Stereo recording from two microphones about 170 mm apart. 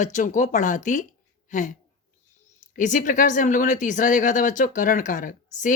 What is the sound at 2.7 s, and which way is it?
A woman's voice, 50° left (ahead or behind).